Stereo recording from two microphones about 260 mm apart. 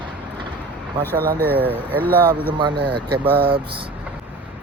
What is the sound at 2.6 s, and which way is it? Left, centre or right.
Speech, centre.